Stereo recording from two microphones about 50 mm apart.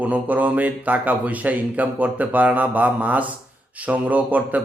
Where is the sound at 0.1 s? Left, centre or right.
Right.